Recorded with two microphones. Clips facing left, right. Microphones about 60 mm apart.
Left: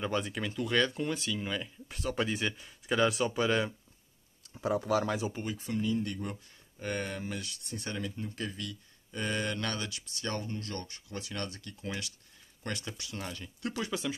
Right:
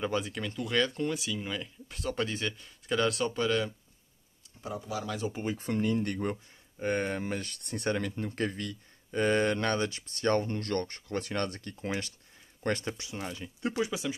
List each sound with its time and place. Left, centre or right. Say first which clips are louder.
0.0 s speech: right 1 dB; centre
4.6 s speech: left 7 dB; left
5.2 s speech: right 2 dB; centre
5.6 s speech: right 2 dB; right
6.8 s speech: right 5 dB; right
13.2 s speech: right 4 dB; centre